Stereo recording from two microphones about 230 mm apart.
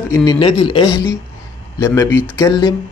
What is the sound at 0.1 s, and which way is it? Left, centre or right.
Speech, centre.